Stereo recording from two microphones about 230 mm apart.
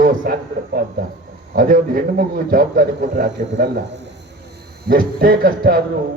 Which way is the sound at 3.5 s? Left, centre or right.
Right.